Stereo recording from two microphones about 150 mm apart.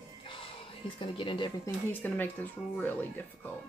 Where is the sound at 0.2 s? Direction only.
35° left (ahead or behind).